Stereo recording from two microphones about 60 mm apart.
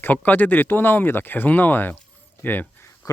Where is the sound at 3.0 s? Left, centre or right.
Left.